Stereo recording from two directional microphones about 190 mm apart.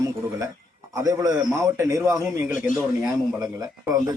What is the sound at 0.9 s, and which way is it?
Speech, 15° right (ahead or behind).